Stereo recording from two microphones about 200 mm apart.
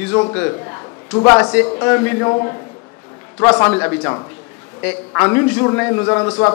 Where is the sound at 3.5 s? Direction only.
15° left (ahead or behind).